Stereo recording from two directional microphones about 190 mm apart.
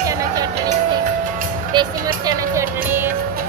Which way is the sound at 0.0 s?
20° right (ahead or behind).